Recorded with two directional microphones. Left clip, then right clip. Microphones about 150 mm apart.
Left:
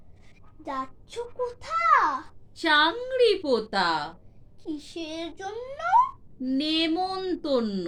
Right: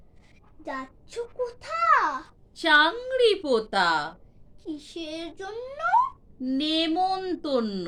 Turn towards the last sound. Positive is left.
turn(degrees=-25)  # may be behind; listen again after turning